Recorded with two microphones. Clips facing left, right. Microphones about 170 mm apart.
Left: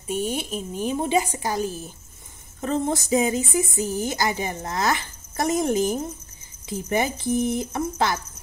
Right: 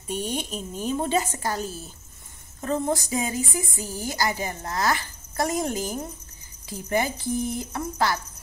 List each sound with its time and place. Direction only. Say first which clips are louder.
0.1 s speech: left 3 dB; 5° left (ahead or behind)